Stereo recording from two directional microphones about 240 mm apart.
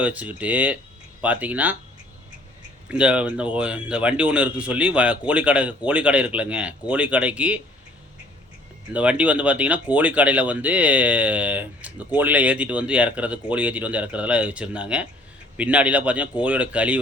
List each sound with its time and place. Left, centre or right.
0.0 s speech: centre
2.9 s speech: centre
8.9 s speech: centre